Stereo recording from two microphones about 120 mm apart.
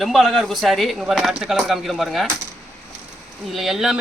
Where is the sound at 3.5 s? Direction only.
Centre (ahead or behind).